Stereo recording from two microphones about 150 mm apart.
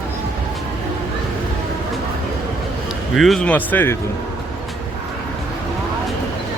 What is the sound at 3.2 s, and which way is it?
Speech, 5° left (ahead or behind).